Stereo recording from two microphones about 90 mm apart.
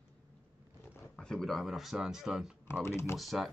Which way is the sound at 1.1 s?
5° left (ahead or behind).